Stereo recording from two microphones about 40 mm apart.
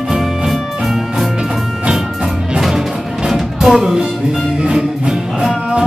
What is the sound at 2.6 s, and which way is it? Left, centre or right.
Music, centre.